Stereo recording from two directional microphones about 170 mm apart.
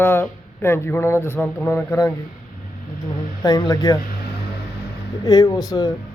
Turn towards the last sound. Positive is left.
turn(degrees=20)  # may be behind; listen again after turning